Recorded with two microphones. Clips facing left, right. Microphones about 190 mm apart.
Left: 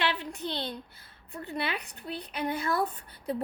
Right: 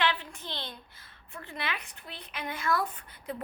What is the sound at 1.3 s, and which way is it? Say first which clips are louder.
Speech: left 4 dB; 35° left (ahead or behind).